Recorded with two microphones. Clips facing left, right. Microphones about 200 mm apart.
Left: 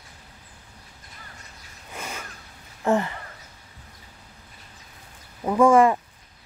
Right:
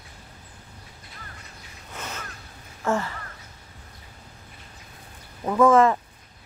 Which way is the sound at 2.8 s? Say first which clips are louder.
Left 3 dB; 20° left (ahead or behind).